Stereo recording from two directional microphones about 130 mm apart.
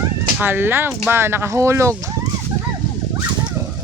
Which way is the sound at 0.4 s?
15° right (ahead or behind).